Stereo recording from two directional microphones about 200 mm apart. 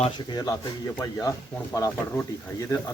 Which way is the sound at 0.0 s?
20° left (ahead or behind).